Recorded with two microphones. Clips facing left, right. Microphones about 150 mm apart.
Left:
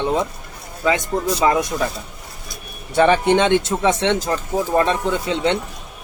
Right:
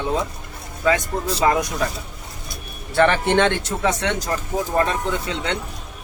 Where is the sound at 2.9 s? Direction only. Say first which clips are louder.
Left 2 dB; 15° left (ahead or behind).